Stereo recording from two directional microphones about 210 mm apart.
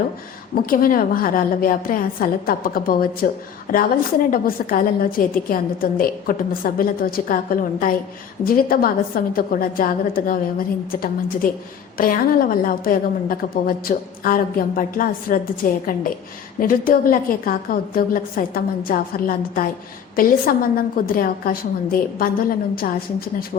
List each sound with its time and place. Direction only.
0.6 s a woman's voice: 40° left (ahead or behind)
11.9 s a woman's voice: 40° left (ahead or behind)